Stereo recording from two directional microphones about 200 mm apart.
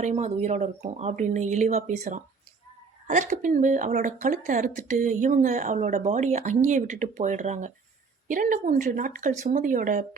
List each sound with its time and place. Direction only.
0.0 s speech: 35° right (ahead or behind)